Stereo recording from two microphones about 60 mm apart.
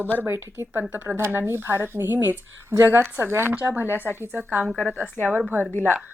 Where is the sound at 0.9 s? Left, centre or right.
Right.